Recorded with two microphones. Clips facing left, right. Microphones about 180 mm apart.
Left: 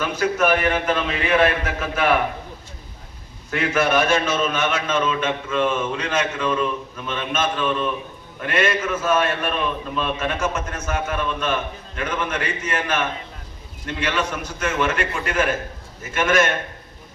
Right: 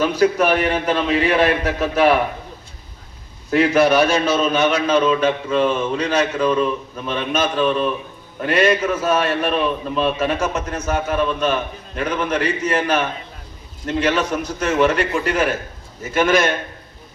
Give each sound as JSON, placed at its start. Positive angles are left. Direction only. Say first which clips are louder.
{"t": 0.0, "sound": "a man's voice", "louder": "right 5 dB", "side_deg": -35}
{"t": 3.5, "sound": "a man's voice", "louder": "right 6 dB", "side_deg": -35}